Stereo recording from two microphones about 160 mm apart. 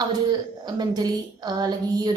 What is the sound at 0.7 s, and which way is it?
A woman's voice, 25° right (ahead or behind).